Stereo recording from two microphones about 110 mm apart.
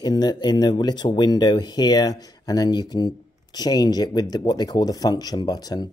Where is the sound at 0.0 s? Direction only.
40° left (ahead or behind).